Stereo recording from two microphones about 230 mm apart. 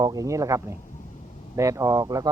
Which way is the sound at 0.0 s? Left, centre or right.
Centre.